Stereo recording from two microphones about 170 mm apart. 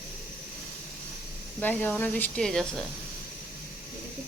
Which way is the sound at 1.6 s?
10° left (ahead or behind).